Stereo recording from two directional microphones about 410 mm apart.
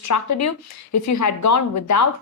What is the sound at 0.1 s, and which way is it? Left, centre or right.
A woman's voice, left.